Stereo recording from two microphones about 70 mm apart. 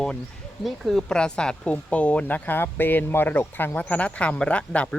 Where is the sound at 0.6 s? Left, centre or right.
Centre.